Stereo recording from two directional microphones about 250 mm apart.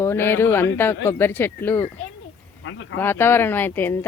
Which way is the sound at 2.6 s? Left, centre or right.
Left.